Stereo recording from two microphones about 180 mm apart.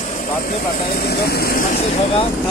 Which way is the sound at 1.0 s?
60° left (ahead or behind).